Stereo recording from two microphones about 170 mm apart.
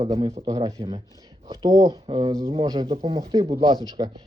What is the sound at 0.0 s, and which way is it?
Speech, 30° right (ahead or behind).